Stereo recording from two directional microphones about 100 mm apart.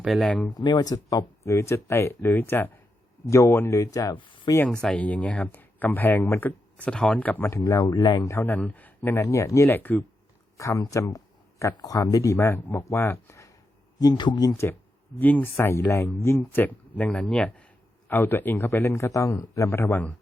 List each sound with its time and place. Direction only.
0.2 s speech: 10° left (ahead or behind)
0.4 s speech: 45° left (ahead or behind); by 2.7 s 20° left (ahead or behind)
3.2 s speech: 30° left (ahead or behind)
4.1 s speech: 55° left (ahead or behind)
4.8 s speech: 15° left (ahead or behind)
6.7 s speech: 10° left (ahead or behind)
7.4 s speech: 30° left (ahead or behind)
7.9 s speech: 55° left (ahead or behind)
8.4 s speech: 20° left (ahead or behind)
9.2 s speech: 30° left (ahead or behind)
9.7 s speech: 20° left (ahead or behind)
10.6 s speech: 35° left (ahead or behind)
14.0 s speech: 45° left (ahead or behind)
14.5 s speech: 25° left (ahead or behind)